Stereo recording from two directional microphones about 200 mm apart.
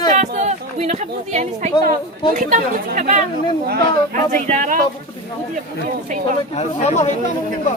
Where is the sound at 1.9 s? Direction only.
40° right (ahead or behind).